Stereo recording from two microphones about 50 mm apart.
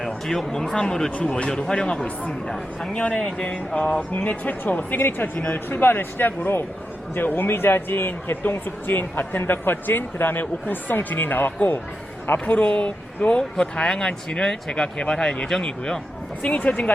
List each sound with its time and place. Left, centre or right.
0.0 s speech: centre; by 11.8 s left
12.5 s speech: left